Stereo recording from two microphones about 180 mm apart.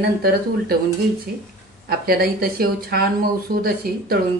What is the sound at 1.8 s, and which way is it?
Speech, 60° right (ahead or behind).